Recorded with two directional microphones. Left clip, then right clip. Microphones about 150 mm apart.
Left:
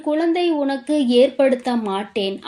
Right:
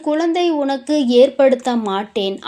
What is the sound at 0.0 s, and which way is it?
Speech, 25° right (ahead or behind).